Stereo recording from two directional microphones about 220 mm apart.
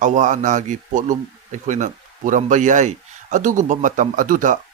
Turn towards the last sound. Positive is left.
turn(degrees=-35)  # may be behind; listen again after turning